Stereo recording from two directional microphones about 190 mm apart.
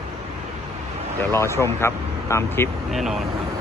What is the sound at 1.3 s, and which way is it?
Speech, 15° left (ahead or behind).